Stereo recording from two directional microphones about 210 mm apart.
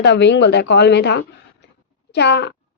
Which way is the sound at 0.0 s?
55° left (ahead or behind).